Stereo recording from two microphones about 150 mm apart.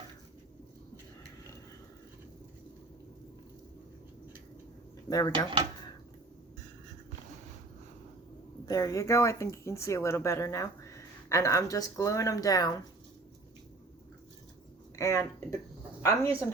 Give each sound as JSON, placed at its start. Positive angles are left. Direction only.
{"t": 5.0, "sound": "speech", "side_deg": 25}
{"t": 8.6, "sound": "speech", "side_deg": 25}
{"t": 14.9, "sound": "speech", "side_deg": 20}